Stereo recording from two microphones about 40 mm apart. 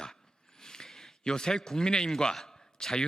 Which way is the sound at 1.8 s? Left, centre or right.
Centre.